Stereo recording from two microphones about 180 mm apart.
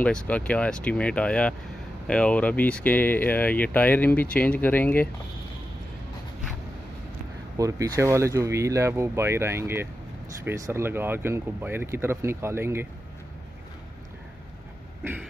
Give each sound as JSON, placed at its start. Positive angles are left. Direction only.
{"t": 0.0, "sound": "speech", "side_deg": 5}
{"t": 7.5, "sound": "speech", "side_deg": -20}